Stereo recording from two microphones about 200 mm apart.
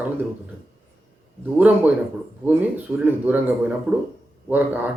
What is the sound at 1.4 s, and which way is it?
Speech, 10° right (ahead or behind).